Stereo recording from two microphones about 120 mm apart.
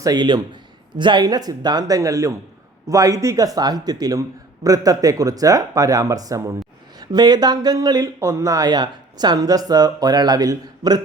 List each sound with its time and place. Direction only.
0.0 s speech: 35° right (ahead or behind)